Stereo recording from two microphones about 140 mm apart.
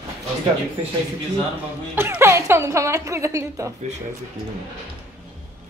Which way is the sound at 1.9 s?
15° right (ahead or behind).